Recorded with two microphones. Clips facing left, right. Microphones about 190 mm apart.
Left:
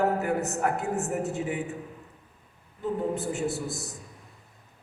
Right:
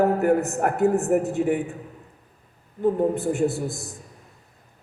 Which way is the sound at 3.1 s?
55° right (ahead or behind).